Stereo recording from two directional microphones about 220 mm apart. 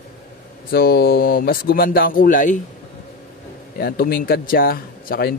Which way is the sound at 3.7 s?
40° left (ahead or behind).